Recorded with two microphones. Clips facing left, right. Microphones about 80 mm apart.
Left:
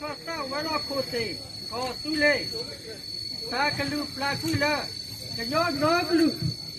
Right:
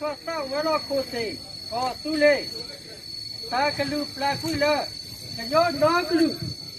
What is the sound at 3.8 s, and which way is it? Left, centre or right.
Speech, centre.